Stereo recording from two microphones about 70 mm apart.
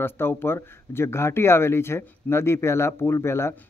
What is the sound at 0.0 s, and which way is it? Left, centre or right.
Speech, left.